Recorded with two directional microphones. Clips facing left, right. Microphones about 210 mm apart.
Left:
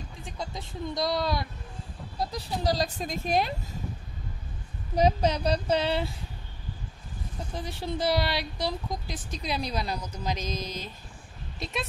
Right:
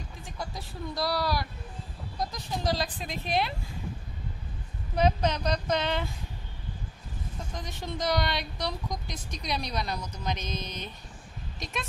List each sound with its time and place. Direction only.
0.2 s speech: 20° left (ahead or behind)
2.1 s speech: 35° left (ahead or behind)
4.9 s speech: 35° left (ahead or behind)
7.5 s a woman's voice: 10° left (ahead or behind)
8.0 s speech: 30° left (ahead or behind)